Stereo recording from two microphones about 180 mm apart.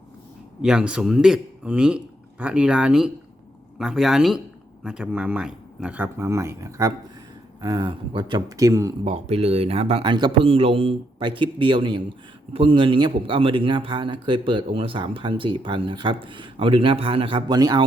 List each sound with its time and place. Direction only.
0.6 s a man's voice: 5° right (ahead or behind)
9.0 s speech: 35° right (ahead or behind)